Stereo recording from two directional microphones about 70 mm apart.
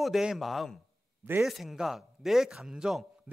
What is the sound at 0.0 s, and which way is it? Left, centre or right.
A man's voice, centre.